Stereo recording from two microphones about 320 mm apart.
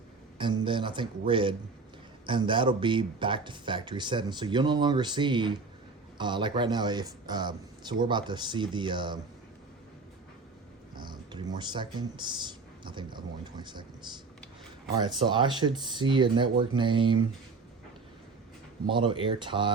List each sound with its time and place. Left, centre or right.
0.3 s speech: centre
10.9 s speech: centre
18.9 s speech: centre